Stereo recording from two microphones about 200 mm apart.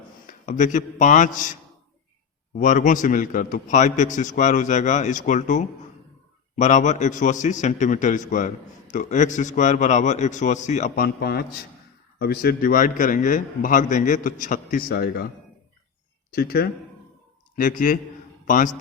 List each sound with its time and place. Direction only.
0.4 s a man's voice: 40° left (ahead or behind)
2.6 s a man's voice: 40° left (ahead or behind)
16.3 s a man's voice: 50° left (ahead or behind)